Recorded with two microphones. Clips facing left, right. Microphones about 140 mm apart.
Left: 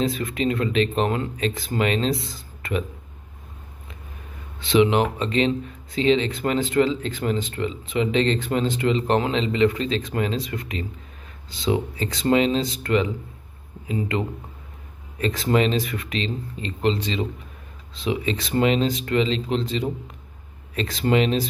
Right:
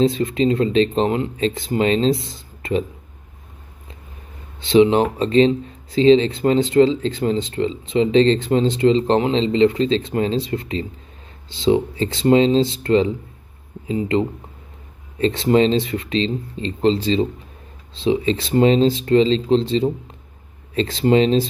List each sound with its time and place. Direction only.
0.0 s speech: 25° right (ahead or behind)
4.6 s speech: 30° right (ahead or behind)